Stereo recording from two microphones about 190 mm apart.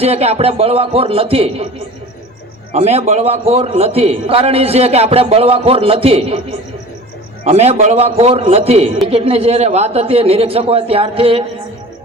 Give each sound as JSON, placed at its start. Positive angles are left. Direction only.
{"t": 0.0, "sound": "a man's voice", "side_deg": -35}
{"t": 2.7, "sound": "a man's voice", "side_deg": -35}
{"t": 7.4, "sound": "a man's voice", "side_deg": -35}